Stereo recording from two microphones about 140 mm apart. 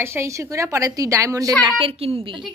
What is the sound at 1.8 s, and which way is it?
Speech, 45° right (ahead or behind).